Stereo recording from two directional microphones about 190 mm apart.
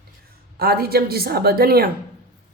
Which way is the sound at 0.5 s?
55° right (ahead or behind).